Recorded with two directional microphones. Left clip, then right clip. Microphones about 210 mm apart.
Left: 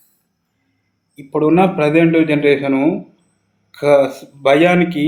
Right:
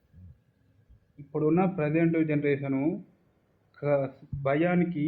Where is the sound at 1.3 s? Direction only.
15° left (ahead or behind).